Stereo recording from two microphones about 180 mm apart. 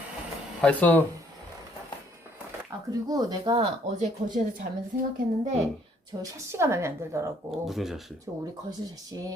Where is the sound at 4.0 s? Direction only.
45° right (ahead or behind).